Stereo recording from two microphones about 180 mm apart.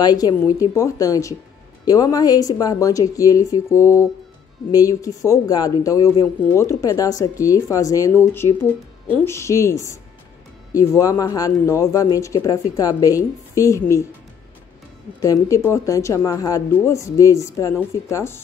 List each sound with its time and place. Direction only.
0.0 s speech: 20° left (ahead or behind)
15.2 s speech: 15° left (ahead or behind)